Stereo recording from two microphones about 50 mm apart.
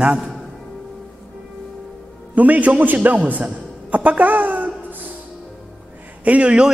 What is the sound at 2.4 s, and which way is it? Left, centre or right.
A man's voice, right.